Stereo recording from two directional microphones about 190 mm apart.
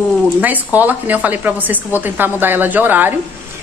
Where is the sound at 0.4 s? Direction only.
10° right (ahead or behind).